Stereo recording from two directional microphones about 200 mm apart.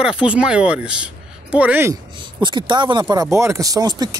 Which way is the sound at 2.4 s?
25° right (ahead or behind).